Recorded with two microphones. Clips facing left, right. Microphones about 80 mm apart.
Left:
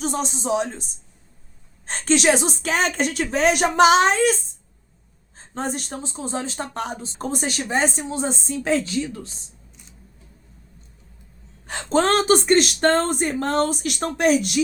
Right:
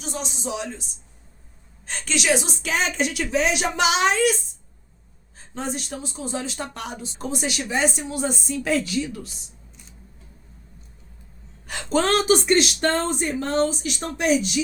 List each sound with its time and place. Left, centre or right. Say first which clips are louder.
0.0 s speech: left 6 dB; left
5.4 s speech: left 2 dB; left
11.6 s speech: left 2 dB; left